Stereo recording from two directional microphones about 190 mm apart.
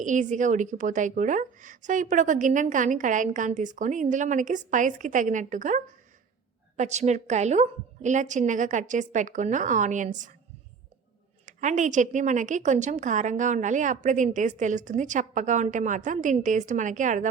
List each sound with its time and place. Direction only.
0.0 s speech: 40° right (ahead or behind)
11.4 s speech: 40° right (ahead or behind)